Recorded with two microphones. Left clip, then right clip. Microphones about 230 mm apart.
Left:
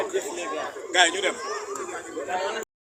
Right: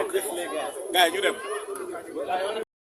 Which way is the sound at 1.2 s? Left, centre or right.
Right.